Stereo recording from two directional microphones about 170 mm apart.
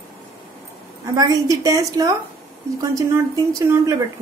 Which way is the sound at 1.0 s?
20° right (ahead or behind).